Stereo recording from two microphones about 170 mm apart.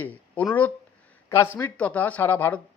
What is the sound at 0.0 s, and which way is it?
Speech, 10° left (ahead or behind).